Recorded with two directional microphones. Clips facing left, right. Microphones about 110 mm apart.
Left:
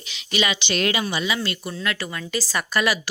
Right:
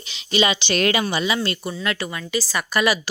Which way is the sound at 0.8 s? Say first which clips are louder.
Right 3 dB; 55° right (ahead or behind).